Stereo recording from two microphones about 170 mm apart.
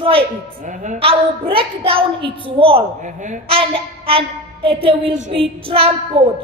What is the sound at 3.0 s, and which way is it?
Speech, 45° right (ahead or behind).